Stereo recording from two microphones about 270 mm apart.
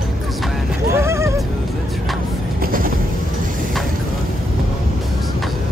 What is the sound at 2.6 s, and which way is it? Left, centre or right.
Train, right.